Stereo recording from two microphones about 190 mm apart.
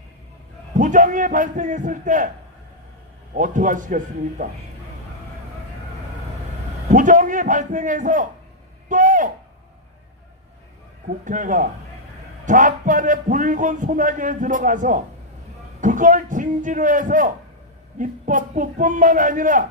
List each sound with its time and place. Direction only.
0.7 s a man's voice: 45° right (ahead or behind)
3.3 s a man's voice: 45° right (ahead or behind)
6.8 s a man's voice: 45° right (ahead or behind)
11.3 s a man's voice: 45° right (ahead or behind)